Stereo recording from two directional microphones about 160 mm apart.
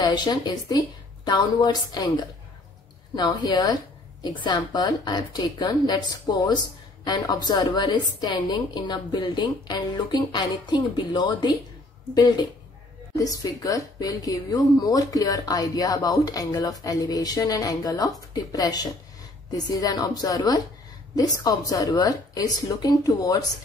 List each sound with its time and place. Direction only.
0.0 s a woman's voice: 25° left (ahead or behind)